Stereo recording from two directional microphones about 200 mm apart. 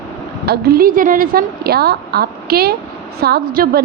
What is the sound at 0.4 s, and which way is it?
Speech, 50° right (ahead or behind).